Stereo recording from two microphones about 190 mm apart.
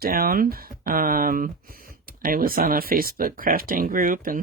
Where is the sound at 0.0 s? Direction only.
50° right (ahead or behind).